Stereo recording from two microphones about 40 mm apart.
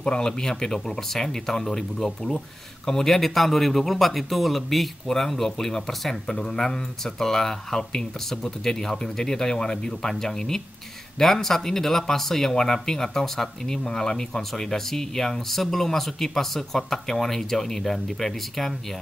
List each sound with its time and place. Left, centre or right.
0.0 s speech: centre